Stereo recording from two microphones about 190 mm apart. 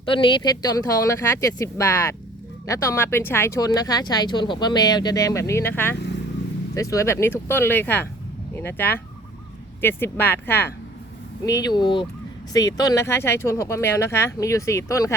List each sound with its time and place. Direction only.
0.0 s speech: 25° left (ahead or behind)